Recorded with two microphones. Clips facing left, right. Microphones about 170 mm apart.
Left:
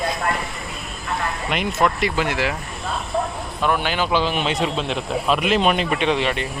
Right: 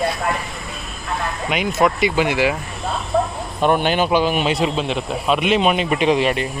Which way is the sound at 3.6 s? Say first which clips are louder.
Right 5 dB; 25° right (ahead or behind).